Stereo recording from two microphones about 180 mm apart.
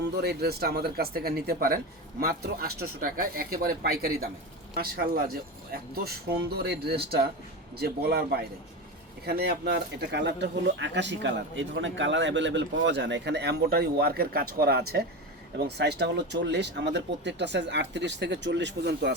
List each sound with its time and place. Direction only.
0.0 s speech: 65° right (ahead or behind)